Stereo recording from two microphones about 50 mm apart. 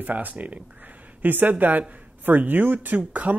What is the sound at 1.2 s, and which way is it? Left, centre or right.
Speech, right.